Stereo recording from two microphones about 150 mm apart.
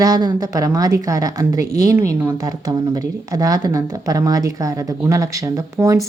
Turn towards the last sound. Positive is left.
turn(degrees=-20)  # may be behind; listen again after turning